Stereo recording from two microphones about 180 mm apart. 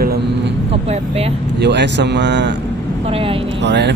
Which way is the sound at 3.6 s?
75° right (ahead or behind).